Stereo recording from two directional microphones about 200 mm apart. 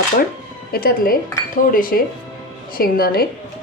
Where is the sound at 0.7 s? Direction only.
50° left (ahead or behind).